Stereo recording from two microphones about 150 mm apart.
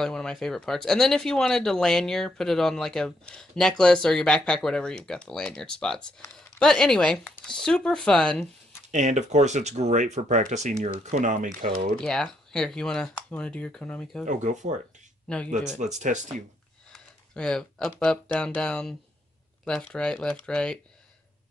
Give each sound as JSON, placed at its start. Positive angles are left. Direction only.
{"t": 0.0, "sound": "speech", "side_deg": 5}
{"t": 8.9, "sound": "speech", "side_deg": -50}
{"t": 12.0, "sound": "speech", "side_deg": 5}
{"t": 14.2, "sound": "speech", "side_deg": -55}
{"t": 15.2, "sound": "speech", "side_deg": 5}
{"t": 16.0, "sound": "speech", "side_deg": -55}
{"t": 16.9, "sound": "speech", "side_deg": 5}